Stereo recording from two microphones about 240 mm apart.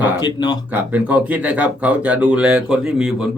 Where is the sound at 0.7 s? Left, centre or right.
Centre.